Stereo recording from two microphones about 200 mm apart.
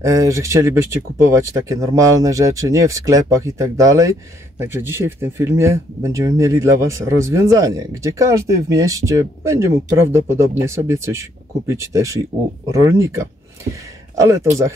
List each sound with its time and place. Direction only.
0.0 s speech: 15° right (ahead or behind)